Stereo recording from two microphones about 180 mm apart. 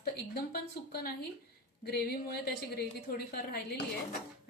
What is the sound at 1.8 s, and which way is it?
A woman's voice, 60° left (ahead or behind).